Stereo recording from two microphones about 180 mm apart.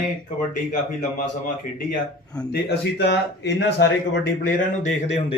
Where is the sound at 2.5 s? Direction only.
65° left (ahead or behind).